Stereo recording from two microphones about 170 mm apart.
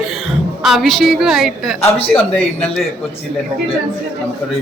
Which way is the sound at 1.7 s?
35° left (ahead or behind).